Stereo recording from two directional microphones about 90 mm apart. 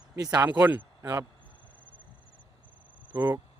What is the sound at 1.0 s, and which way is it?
Speech, 40° right (ahead or behind).